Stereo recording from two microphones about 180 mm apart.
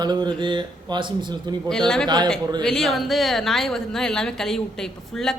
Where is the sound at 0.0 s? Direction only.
25° right (ahead or behind).